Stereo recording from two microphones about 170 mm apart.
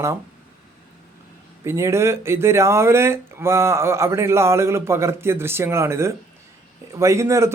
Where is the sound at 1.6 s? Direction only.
15° right (ahead or behind).